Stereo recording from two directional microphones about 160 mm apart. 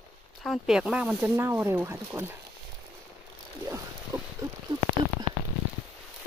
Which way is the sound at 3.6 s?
20° right (ahead or behind).